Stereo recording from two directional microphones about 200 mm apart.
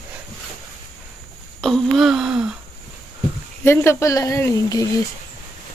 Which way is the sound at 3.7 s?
15° left (ahead or behind).